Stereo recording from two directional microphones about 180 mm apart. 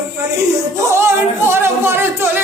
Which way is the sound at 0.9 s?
15° right (ahead or behind).